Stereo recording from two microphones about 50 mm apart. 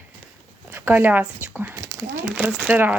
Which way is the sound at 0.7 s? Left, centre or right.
Right.